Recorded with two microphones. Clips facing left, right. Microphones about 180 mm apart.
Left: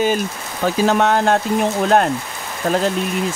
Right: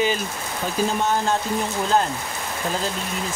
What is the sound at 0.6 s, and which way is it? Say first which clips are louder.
Speech: left 7 dB; 75° left (ahead or behind).